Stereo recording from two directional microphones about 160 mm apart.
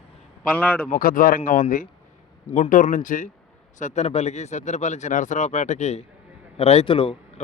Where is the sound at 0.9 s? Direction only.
65° left (ahead or behind).